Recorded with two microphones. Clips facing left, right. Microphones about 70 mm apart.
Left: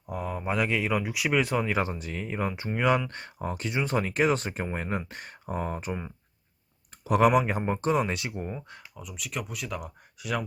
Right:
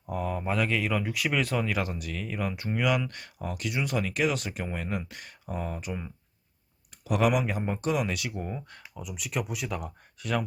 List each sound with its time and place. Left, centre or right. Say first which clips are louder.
0.1 s speech: right 1 dB; centre; by 6.0 s left
7.0 s speech: left 4 dB; left
9.0 s speech: right 3 dB; centre